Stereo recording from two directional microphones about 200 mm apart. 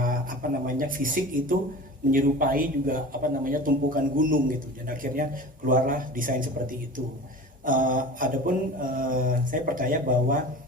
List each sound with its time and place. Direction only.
0.0 s a man's voice: 45° right (ahead or behind)